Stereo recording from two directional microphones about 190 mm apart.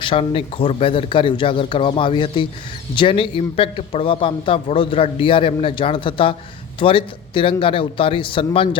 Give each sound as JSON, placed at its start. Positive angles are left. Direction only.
{"t": 0.0, "sound": "a man's voice", "side_deg": 30}